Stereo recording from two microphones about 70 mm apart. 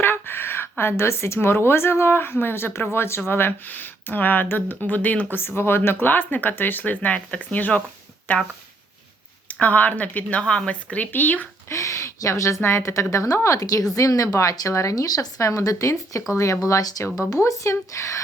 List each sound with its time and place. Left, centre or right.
0.0 s a woman's voice: left
5.3 s speech: left
9.5 s speech: left
11.7 s a woman's voice: left